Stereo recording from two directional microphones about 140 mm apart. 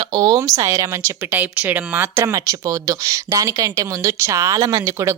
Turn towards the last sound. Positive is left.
turn(degrees=-20)  # may be behind; listen again after turning